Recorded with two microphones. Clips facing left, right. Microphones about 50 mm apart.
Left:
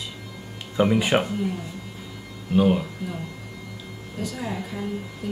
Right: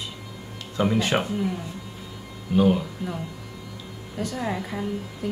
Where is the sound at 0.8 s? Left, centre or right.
Centre.